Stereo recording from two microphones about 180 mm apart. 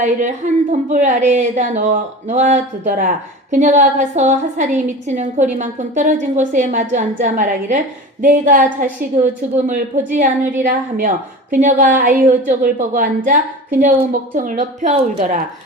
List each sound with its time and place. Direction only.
0.0 s a woman's voice: 40° right (ahead or behind)